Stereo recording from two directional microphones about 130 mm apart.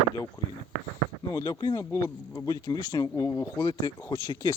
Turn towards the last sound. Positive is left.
turn(degrees=30)  # may be behind; listen again after turning